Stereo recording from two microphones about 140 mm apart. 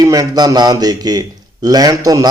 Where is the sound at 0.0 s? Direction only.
25° right (ahead or behind).